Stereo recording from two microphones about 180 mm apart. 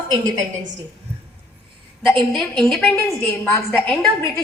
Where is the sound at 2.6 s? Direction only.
5° left (ahead or behind).